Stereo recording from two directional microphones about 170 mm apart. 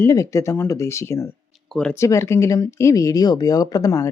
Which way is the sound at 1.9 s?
15° left (ahead or behind).